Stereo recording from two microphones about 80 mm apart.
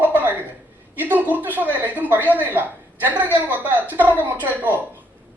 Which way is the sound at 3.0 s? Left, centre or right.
Right.